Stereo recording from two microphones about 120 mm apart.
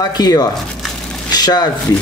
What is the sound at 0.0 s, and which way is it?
Speech, 35° left (ahead or behind).